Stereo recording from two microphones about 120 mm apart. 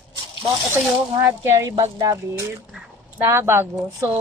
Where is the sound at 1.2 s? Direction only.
20° right (ahead or behind).